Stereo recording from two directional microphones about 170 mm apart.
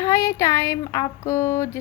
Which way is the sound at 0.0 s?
15° left (ahead or behind).